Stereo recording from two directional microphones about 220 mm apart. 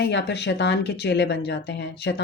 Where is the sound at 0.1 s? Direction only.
50° left (ahead or behind).